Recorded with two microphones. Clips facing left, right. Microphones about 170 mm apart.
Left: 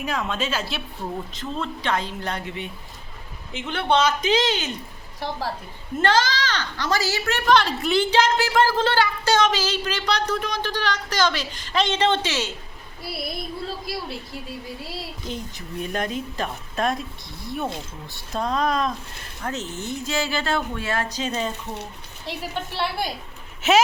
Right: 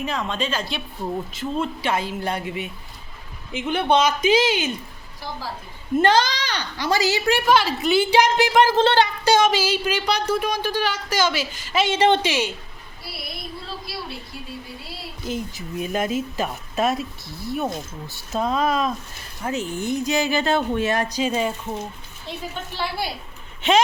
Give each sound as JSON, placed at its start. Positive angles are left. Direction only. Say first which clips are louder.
{"t": 0.0, "sound": "speech", "louder": "right 1 dB", "side_deg": 0}
{"t": 1.0, "sound": "speech", "louder": "right 5 dB", "side_deg": -10}
{"t": 6.0, "sound": "speech", "louder": "right 2 dB", "side_deg": -15}
{"t": 8.1, "sound": "a woman's voice", "louder": "right 4 dB", "side_deg": -15}
{"t": 9.2, "sound": "speech", "louder": "right 3 dB", "side_deg": -10}
{"t": 15.2, "sound": "speech", "louder": "right 4 dB", "side_deg": -5}
{"t": 22.3, "sound": "a woman's voice", "louder": "left 2 dB", "side_deg": 65}
{"t": 23.6, "sound": "speech", "louder": "even", "side_deg": 5}